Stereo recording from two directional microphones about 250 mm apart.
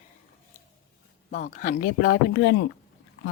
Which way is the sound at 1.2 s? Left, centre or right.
Left.